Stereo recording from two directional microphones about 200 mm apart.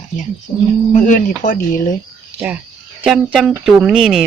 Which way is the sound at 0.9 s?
40° left (ahead or behind).